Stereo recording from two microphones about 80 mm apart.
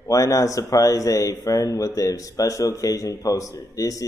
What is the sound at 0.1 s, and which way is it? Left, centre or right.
Speech, left.